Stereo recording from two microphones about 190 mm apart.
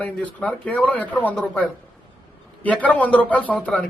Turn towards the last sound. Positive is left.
turn(degrees=5)  # may be behind; listen again after turning